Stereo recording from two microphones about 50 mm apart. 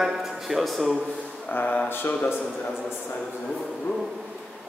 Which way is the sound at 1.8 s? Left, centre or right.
Left.